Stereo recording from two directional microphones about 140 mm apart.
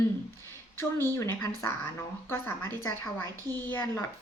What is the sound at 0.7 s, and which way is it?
A woman's voice, 15° left (ahead or behind).